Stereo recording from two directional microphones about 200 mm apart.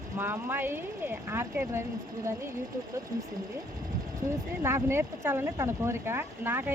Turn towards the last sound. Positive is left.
turn(degrees=-10)  # may be behind; listen again after turning